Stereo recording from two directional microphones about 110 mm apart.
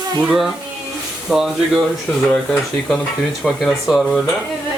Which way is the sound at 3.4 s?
Centre (ahead or behind).